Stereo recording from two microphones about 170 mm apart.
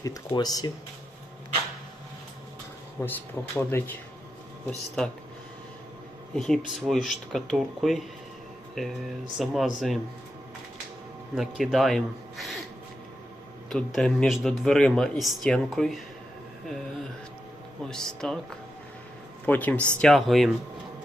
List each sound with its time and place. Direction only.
0.0 s speech: 25° left (ahead or behind)
3.0 s speech: 15° left (ahead or behind)
5.0 s a man's voice: 5° left (ahead or behind)
6.3 s a man's voice: 5° left (ahead or behind)
11.3 s a man's voice: centre (ahead or behind)
13.7 s a man's voice: 5° left (ahead or behind)
17.8 s a man's voice: 5° left (ahead or behind)
19.5 s a man's voice: 10° left (ahead or behind)